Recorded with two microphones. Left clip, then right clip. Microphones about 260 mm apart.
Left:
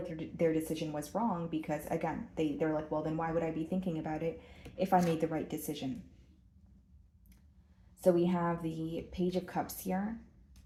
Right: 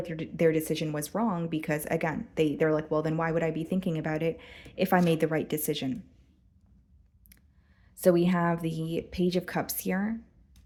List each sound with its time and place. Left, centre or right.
0.1 s speech: right
7.9 s speech: right